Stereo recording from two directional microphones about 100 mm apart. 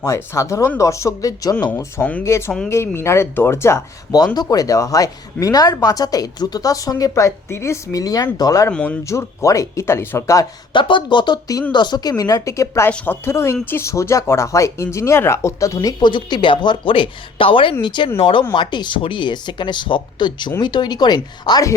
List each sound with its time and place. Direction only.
0.0 s speech: 30° left (ahead or behind)
1.7 s speech: 15° left (ahead or behind)
4.4 s speech: 35° left (ahead or behind)
8.7 s speech: 15° left (ahead or behind)
9.0 s speech: 30° left (ahead or behind)
10.7 s speech: 55° left (ahead or behind)
18.2 s speech: 60° left (ahead or behind)
18.5 s speech: 50° left (ahead or behind)